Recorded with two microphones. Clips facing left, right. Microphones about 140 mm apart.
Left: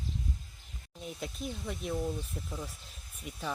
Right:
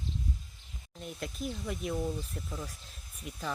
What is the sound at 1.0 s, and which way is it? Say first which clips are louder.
Speech: right 1 dB; centre (ahead or behind).